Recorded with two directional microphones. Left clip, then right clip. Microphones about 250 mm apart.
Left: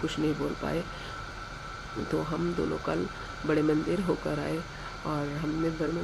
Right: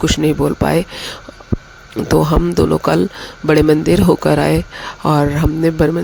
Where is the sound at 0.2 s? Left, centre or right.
Right.